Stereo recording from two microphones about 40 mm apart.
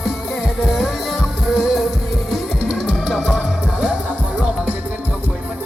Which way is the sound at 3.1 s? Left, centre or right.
Centre.